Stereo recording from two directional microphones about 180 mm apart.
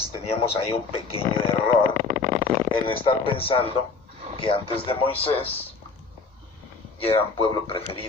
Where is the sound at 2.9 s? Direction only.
30° left (ahead or behind).